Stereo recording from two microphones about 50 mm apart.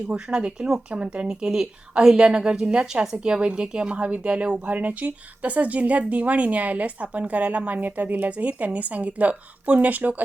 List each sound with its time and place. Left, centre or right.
0.1 s speech: centre